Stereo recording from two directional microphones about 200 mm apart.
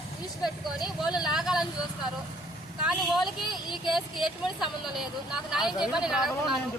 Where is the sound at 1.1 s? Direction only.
20° left (ahead or behind).